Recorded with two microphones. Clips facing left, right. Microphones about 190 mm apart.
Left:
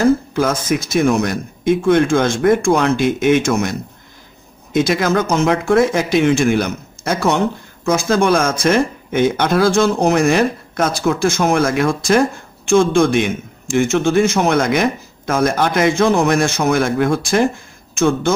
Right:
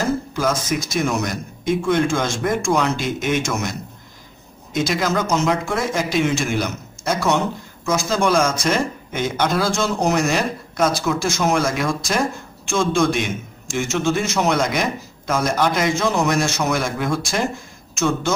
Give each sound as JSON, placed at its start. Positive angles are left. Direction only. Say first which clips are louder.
{"t": 0.3, "sound": "a man's voice", "louder": "left 4 dB", "side_deg": 55}
{"t": 4.7, "sound": "a man's voice", "louder": "left 5 dB", "side_deg": 55}